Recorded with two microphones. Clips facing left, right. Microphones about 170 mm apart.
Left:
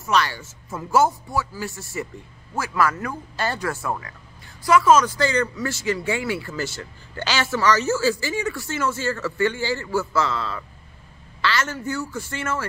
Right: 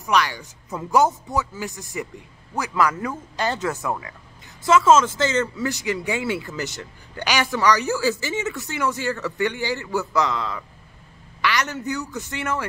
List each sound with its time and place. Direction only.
0.0 s speech: 15° right (ahead or behind)